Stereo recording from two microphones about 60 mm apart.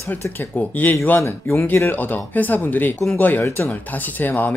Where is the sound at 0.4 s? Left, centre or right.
Left.